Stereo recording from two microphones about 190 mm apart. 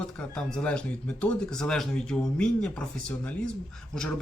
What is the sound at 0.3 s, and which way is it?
Speech, 5° left (ahead or behind).